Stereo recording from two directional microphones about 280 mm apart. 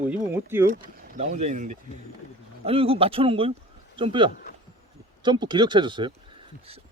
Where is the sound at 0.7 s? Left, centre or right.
Right.